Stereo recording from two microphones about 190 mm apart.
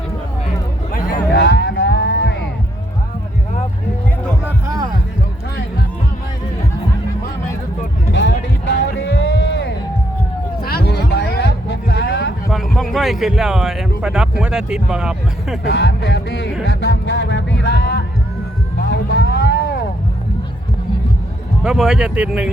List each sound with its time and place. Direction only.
0.9 s a sound: 45° left (ahead or behind); by 2.4 s 65° left (ahead or behind)
4.6 s heart sounds: 20° right (ahead or behind)
8.1 s music: 70° left (ahead or behind)
10.6 s a sound: 55° left (ahead or behind)
12.5 s speech: centre (ahead or behind)
15.7 s music: 65° left (ahead or behind)
18.8 s vehicle: 65° left (ahead or behind)
21.6 s speech: 5° right (ahead or behind)